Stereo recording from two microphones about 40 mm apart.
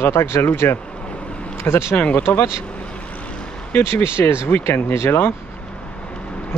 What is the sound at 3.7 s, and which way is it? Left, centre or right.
Speech, left.